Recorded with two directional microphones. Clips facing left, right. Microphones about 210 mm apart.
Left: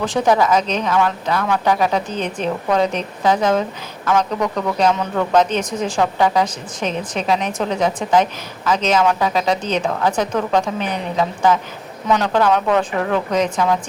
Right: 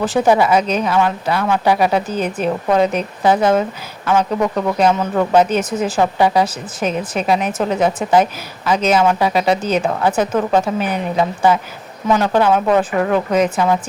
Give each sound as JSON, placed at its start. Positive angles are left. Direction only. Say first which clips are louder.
{"t": 0.0, "sound": "speech", "louder": "right 2 dB", "side_deg": -5}